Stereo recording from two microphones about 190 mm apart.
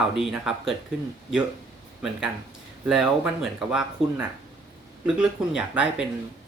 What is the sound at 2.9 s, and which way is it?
Speech, 5° right (ahead or behind).